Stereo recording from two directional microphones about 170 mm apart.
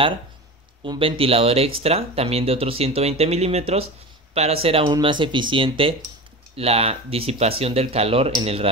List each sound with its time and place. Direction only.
0.8 s speech: 30° right (ahead or behind)